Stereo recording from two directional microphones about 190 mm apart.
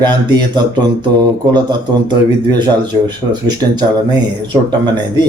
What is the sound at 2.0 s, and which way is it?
Speech, 25° right (ahead or behind).